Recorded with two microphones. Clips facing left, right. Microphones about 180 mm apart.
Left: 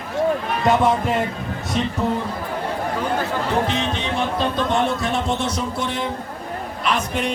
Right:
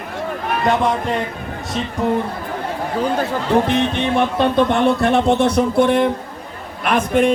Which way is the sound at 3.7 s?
55° right (ahead or behind).